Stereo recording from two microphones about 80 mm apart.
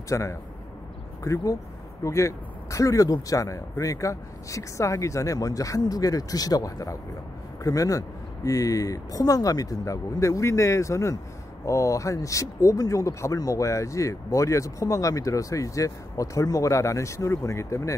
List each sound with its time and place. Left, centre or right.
0.1 s speech: left